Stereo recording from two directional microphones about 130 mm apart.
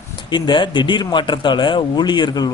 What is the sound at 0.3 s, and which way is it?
Speech, 35° left (ahead or behind).